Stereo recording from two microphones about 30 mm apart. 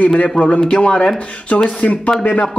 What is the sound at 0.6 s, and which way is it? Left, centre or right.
Speech, left.